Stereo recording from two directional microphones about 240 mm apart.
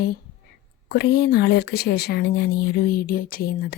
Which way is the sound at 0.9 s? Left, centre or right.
Left.